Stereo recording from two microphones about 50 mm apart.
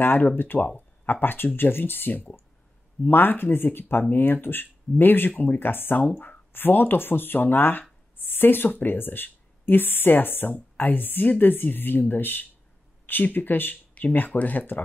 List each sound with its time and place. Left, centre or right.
0.0 s a woman's voice: left